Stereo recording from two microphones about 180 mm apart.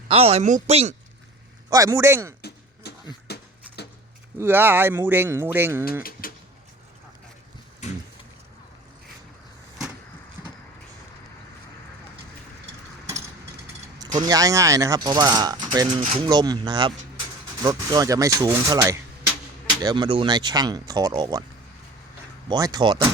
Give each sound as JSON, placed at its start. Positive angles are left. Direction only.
{"t": 0.1, "sound": "speech", "side_deg": -35}
{"t": 1.7, "sound": "speech", "side_deg": -20}
{"t": 2.8, "sound": "beatboxing", "side_deg": 65}
{"t": 4.4, "sound": "speech", "side_deg": -10}
{"t": 6.0, "sound": "pigeon", "side_deg": 55}
{"t": 7.8, "sound": "a sound", "side_deg": 40}
{"t": 14.0, "sound": "speech", "side_deg": -20}
{"t": 22.4, "sound": "speech", "side_deg": -20}